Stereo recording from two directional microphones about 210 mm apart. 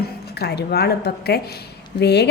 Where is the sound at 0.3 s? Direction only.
50° left (ahead or behind).